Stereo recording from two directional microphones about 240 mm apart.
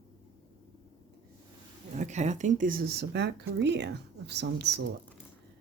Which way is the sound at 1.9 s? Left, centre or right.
Right.